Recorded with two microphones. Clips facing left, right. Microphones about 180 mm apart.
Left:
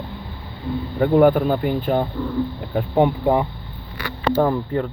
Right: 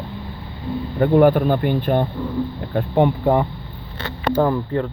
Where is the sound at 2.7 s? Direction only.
5° left (ahead or behind).